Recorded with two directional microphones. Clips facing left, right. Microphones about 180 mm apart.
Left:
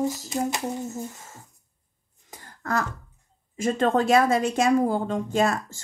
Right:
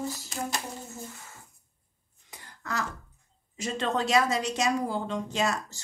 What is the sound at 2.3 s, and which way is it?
Throat clearing, 50° left (ahead or behind).